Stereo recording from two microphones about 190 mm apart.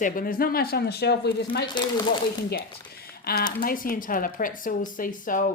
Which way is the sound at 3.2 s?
50° left (ahead or behind).